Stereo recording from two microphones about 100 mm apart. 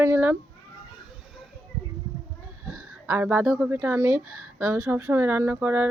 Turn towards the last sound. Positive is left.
turn(degrees=-15)  # may be behind; listen again after turning